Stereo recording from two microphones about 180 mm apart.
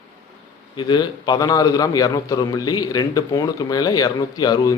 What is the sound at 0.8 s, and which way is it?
A man's voice, 25° left (ahead or behind).